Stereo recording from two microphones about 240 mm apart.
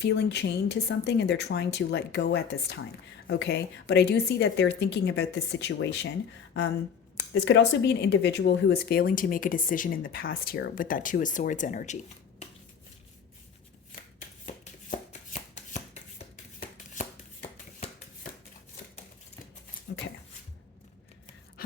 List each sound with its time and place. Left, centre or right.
0.0 s a woman's voice: left
7.3 s speech: left
14.4 s shuffling cards: left
19.9 s a sound: left